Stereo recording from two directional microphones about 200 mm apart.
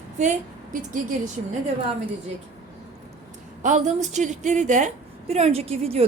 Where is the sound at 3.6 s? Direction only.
35° right (ahead or behind).